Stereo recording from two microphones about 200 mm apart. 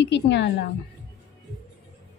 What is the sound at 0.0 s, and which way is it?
Speech, 60° left (ahead or behind).